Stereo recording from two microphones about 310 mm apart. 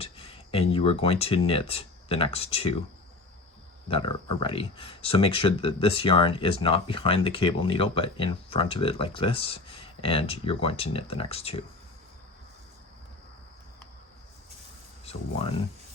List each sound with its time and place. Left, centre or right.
0.0 s speech: centre
3.8 s speech: centre